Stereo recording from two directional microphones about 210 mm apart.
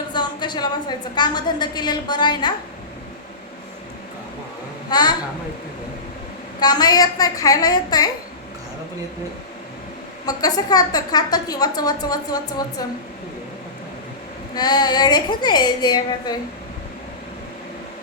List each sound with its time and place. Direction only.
0.1 s a woman's voice: 20° left (ahead or behind)
4.9 s a woman's voice: 20° left (ahead or behind)
6.6 s a woman's voice: 20° left (ahead or behind)
10.2 s a woman's voice: 20° left (ahead or behind)
14.5 s a woman's voice: 20° left (ahead or behind)